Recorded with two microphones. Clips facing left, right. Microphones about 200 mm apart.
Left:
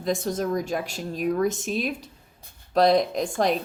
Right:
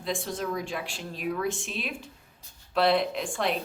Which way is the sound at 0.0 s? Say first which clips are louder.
Left 6 dB; 40° left (ahead or behind).